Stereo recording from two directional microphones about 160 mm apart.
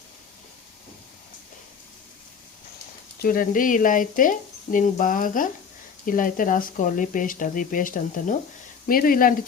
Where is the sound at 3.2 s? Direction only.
60° left (ahead or behind).